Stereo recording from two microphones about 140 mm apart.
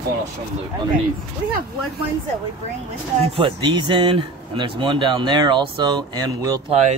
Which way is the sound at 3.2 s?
40° right (ahead or behind).